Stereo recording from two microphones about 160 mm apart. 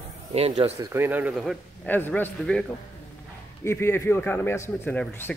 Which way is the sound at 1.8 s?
10° left (ahead or behind).